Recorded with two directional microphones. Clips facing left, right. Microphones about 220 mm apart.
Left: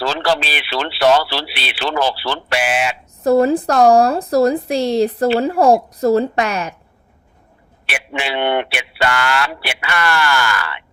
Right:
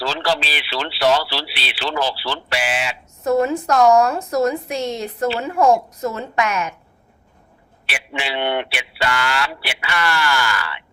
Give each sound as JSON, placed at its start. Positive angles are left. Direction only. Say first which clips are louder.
{"t": 0.0, "sound": "speech", "louder": "left 3 dB", "side_deg": 55}
{"t": 3.2, "sound": "a woman's voice", "louder": "left 4 dB", "side_deg": 35}
{"t": 7.9, "sound": "speech", "louder": "left 3 dB", "side_deg": 55}